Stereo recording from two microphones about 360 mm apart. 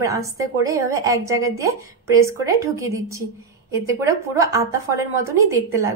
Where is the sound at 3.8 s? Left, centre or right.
Centre.